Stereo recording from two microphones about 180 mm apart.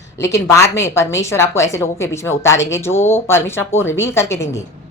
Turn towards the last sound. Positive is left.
turn(degrees=15)  # may be behind; listen again after turning